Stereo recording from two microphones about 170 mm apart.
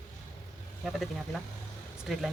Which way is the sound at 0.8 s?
Centre (ahead or behind).